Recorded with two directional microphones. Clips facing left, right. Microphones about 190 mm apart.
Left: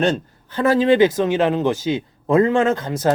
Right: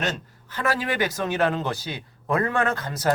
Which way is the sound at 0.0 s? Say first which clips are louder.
Left 10 dB; 30° left (ahead or behind).